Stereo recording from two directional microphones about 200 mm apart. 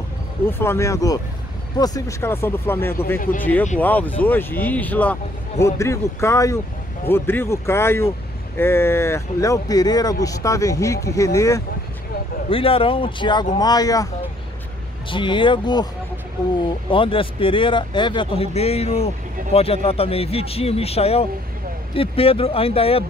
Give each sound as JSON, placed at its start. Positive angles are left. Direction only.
{"t": 0.5, "sound": "speech", "side_deg": 10}
{"t": 3.2, "sound": "speech", "side_deg": 45}
{"t": 3.7, "sound": "speech", "side_deg": 10}
{"t": 12.4, "sound": "speech", "side_deg": 25}
{"t": 15.0, "sound": "speech", "side_deg": 25}
{"t": 16.9, "sound": "speech", "side_deg": 25}